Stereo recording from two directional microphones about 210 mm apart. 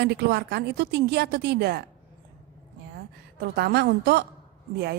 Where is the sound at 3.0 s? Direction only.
50° right (ahead or behind).